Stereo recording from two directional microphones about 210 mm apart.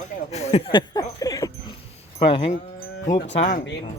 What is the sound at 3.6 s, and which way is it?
Speech, 55° left (ahead or behind).